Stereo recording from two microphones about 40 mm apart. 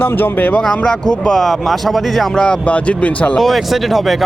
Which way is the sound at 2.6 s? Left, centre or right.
Left.